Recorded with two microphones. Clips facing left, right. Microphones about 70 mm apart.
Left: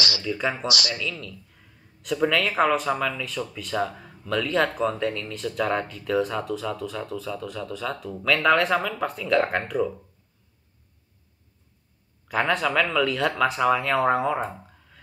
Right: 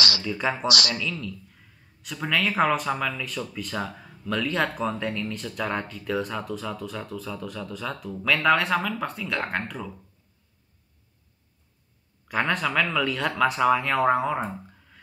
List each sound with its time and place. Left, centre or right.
0.2 s speech: centre
0.7 s speech: right
0.9 s speech: centre
12.3 s speech: centre